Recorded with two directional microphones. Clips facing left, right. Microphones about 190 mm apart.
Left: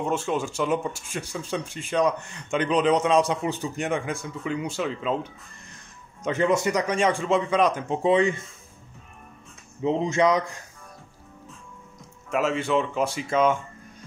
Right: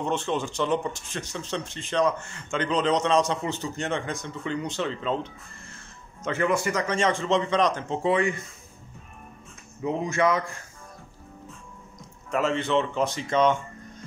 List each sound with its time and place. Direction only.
0.0 s speech: 10° left (ahead or behind)
6.2 s speech: 20° left (ahead or behind)
9.8 s speech: 20° left (ahead or behind)
12.3 s speech: 5° left (ahead or behind)